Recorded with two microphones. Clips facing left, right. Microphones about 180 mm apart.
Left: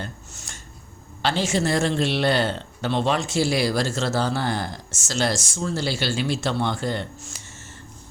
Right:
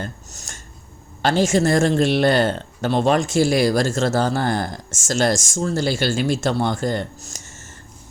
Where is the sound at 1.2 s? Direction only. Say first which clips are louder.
Right 5 dB; 45° right (ahead or behind).